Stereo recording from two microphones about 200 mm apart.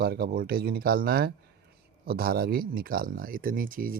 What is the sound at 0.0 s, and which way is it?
Speech, 50° right (ahead or behind).